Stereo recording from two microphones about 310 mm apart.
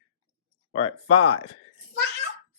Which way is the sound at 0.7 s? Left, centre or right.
Left.